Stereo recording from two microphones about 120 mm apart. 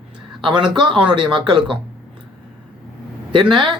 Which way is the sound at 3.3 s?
40° right (ahead or behind).